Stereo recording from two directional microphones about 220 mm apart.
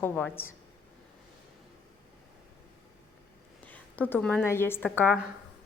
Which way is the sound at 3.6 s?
5° left (ahead or behind).